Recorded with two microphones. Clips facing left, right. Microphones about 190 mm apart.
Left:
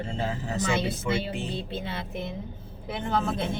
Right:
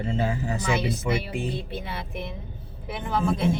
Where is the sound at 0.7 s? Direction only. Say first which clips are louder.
Right 2 dB; 25° left (ahead or behind).